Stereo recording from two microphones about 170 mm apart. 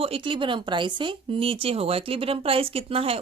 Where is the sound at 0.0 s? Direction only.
30° right (ahead or behind).